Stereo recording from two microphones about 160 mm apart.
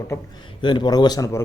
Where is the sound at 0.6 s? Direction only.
30° left (ahead or behind).